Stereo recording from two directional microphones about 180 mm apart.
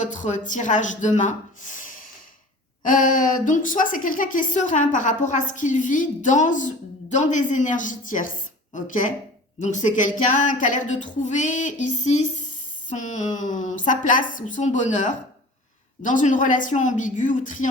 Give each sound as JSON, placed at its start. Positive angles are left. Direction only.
{"t": 0.0, "sound": "speech", "side_deg": 45}